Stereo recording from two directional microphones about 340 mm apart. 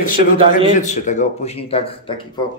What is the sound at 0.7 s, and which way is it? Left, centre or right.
Speech, left.